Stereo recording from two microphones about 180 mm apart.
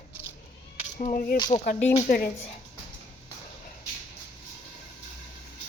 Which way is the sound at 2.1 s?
50° left (ahead or behind).